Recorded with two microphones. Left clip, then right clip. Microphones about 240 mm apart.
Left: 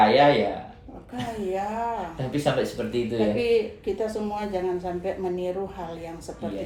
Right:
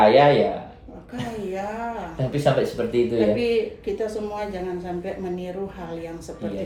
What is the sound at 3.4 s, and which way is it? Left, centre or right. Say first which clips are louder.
A woman's voice: even; centre.